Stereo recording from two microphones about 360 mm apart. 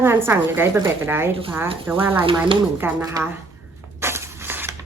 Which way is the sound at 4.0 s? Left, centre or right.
Centre.